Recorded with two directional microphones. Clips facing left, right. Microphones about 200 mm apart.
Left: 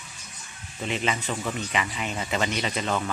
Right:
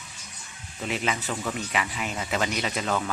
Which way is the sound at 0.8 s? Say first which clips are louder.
Left 1 dB; 5° right (ahead or behind).